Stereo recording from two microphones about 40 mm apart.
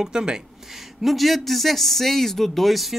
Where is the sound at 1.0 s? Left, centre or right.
Centre.